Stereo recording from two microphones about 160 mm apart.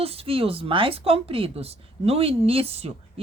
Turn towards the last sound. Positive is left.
turn(degrees=-40)  # may be behind; listen again after turning